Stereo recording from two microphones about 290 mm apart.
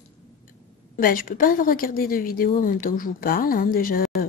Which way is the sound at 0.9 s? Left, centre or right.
Left.